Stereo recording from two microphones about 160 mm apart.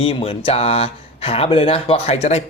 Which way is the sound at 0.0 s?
35° left (ahead or behind).